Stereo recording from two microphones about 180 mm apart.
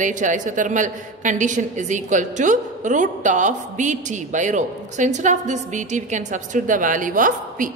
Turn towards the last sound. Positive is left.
turn(degrees=-45)  # may be behind; listen again after turning